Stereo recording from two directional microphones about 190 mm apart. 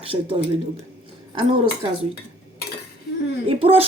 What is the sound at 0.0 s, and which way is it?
Speech, 30° right (ahead or behind).